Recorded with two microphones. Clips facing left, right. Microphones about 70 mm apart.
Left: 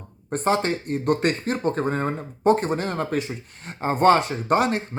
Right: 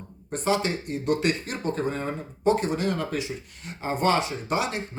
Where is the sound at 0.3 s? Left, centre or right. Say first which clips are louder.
Left 3 dB; left.